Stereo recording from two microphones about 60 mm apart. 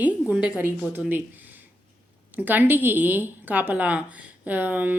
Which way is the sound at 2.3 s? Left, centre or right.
Right.